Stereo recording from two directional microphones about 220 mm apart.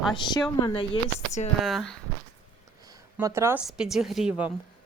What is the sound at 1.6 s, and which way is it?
Speech, centre (ahead or behind).